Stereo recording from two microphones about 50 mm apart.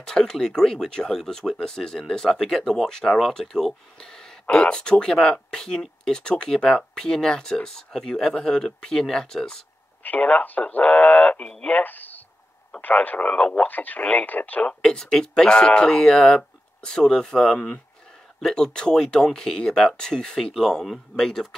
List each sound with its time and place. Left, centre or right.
0.0 s speech: centre
10.0 s speech: left
14.7 s speech: centre